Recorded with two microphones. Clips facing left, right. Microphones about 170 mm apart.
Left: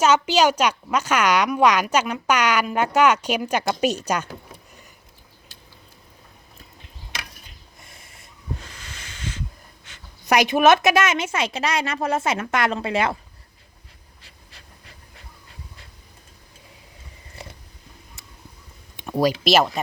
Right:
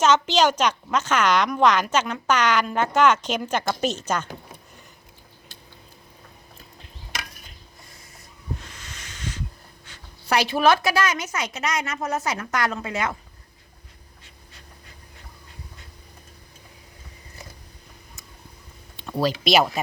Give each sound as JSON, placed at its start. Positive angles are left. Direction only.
{"t": 0.0, "sound": "speech", "side_deg": 10}
{"t": 9.9, "sound": "a woman's voice", "side_deg": 15}
{"t": 18.9, "sound": "a sound", "side_deg": 15}
{"t": 19.5, "sound": "speech", "side_deg": 0}